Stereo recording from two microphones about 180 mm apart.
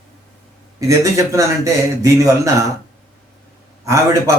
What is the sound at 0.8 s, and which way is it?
Speech, 15° right (ahead or behind).